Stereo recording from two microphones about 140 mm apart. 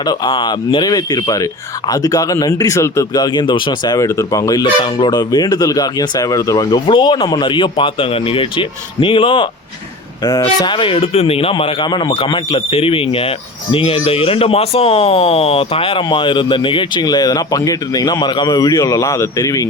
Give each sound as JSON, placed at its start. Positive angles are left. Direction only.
{"t": 0.0, "sound": "speech", "side_deg": 35}
{"t": 4.6, "sound": "speech", "side_deg": 35}
{"t": 10.2, "sound": "speech", "side_deg": 30}